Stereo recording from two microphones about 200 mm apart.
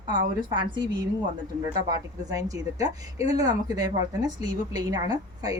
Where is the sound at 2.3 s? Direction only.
20° right (ahead or behind).